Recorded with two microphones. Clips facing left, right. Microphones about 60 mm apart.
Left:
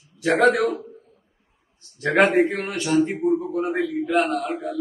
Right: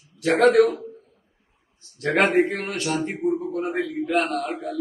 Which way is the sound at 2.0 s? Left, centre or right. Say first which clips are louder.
Left 2 dB; centre.